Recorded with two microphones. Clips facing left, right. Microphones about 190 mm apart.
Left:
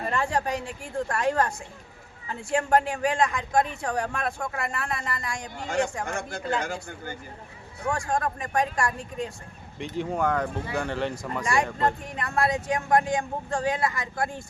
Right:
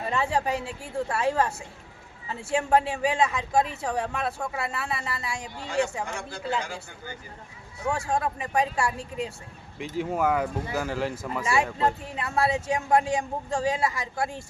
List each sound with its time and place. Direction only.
0.1 s speech: 5° right (ahead or behind)
5.5 s a man's voice: 45° left (ahead or behind)
7.9 s speech: 5° right (ahead or behind)